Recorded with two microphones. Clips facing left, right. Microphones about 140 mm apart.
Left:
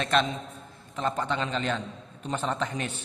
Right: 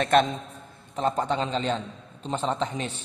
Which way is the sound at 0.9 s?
35° right (ahead or behind).